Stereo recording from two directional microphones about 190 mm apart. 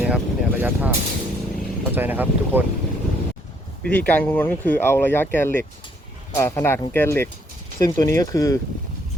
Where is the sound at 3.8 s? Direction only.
5° left (ahead or behind).